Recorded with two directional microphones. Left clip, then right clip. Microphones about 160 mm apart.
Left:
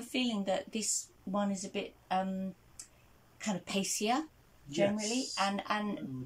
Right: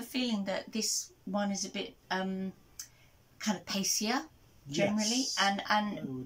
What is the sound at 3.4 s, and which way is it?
A woman's voice, 20° left (ahead or behind).